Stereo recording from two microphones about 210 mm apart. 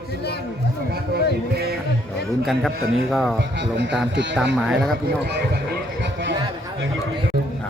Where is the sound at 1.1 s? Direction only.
50° right (ahead or behind).